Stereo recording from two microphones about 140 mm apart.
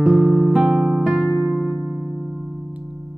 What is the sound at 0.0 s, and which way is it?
Music, 5° right (ahead or behind).